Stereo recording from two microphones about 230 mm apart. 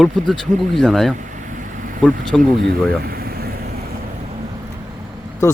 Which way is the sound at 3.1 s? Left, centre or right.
Right.